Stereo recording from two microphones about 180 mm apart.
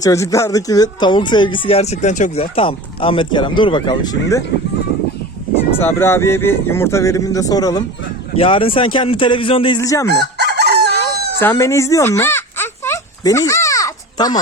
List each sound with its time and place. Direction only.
0.0 s speech: 20° left (ahead or behind)
5.8 s speech: 15° left (ahead or behind)
10.3 s crowing: 65° right (ahead or behind)
11.3 s baby cry: 15° left (ahead or behind)